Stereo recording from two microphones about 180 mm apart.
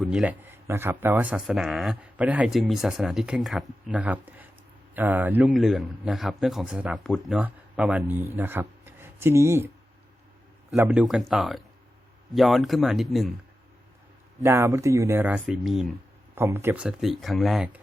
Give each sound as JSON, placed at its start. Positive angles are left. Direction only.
{"t": 0.0, "sound": "speech", "side_deg": 0}
{"t": 10.8, "sound": "speech", "side_deg": -10}
{"t": 14.4, "sound": "speech", "side_deg": -15}
{"t": 15.4, "sound": "speech", "side_deg": 0}
{"t": 16.3, "sound": "speech", "side_deg": -15}